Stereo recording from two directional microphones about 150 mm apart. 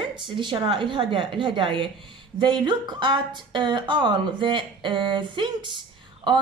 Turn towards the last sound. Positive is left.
turn(degrees=-30)  # may be behind; listen again after turning